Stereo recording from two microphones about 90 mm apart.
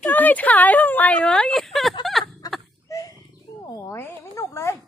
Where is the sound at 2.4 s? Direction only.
45° left (ahead or behind).